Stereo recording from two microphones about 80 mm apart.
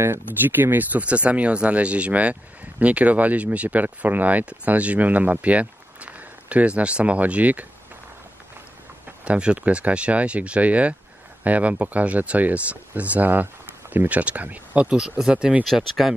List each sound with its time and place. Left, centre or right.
0.4 s speech: right
9.0 s speech: centre
15.6 s speech: centre